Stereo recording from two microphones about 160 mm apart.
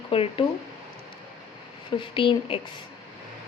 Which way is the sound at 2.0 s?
30° left (ahead or behind).